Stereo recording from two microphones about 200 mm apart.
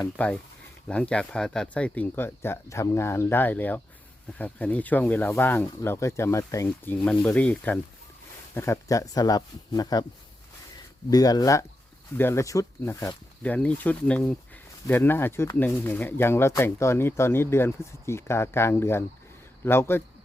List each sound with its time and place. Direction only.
0.0 s speech: 5° left (ahead or behind)
11.1 s speech: 20° left (ahead or behind)